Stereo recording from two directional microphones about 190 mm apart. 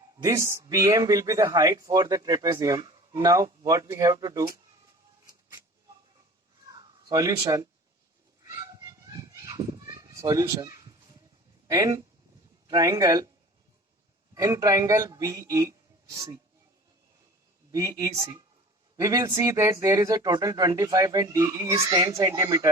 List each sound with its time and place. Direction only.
0.2 s speech: 15° right (ahead or behind)
6.7 s speech: 20° right (ahead or behind)
8.4 s children playing: 20° right (ahead or behind)
11.7 s speech: 20° right (ahead or behind)
14.3 s speech: 15° right (ahead or behind)
17.7 s speech: 20° right (ahead or behind)